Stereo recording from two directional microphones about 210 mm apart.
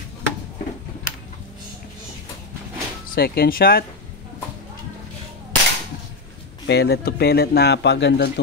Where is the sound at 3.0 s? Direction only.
45° left (ahead or behind).